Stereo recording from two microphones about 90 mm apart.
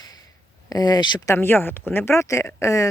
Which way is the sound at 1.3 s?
25° left (ahead or behind).